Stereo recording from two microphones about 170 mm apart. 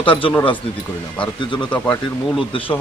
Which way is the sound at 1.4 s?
30° left (ahead or behind).